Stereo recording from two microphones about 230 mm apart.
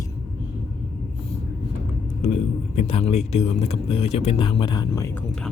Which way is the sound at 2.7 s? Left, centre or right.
Left.